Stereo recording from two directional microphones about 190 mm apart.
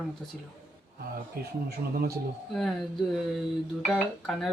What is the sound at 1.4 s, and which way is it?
Speech, 55° right (ahead or behind).